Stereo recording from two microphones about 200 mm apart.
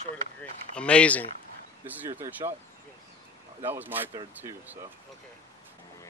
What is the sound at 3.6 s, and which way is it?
Speech, 10° right (ahead or behind).